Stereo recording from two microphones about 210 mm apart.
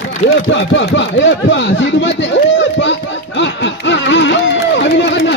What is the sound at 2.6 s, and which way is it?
Music, 60° left (ahead or behind).